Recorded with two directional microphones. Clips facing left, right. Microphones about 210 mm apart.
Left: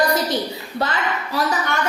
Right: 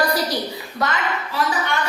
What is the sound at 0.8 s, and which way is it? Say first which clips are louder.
Speech: even; 30° left (ahead or behind).